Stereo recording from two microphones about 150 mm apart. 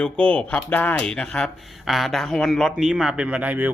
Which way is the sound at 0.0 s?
10° left (ahead or behind).